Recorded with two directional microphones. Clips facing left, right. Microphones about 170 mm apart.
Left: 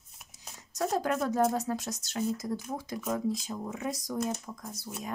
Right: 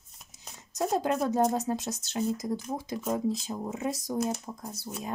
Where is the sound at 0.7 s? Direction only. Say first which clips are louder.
Right 2 dB; 25° right (ahead or behind).